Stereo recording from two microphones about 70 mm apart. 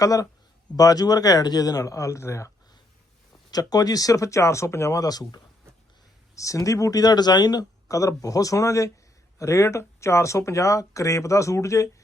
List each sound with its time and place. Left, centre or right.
0.0 s speech: left
3.5 s speech: left
5.0 s speech: left
6.3 s speech: left